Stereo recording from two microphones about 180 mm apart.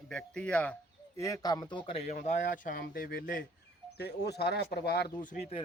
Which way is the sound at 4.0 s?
65° left (ahead or behind).